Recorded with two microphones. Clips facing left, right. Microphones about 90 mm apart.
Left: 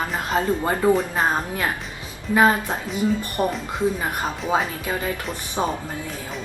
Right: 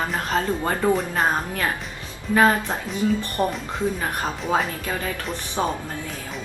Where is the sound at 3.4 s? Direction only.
5° left (ahead or behind).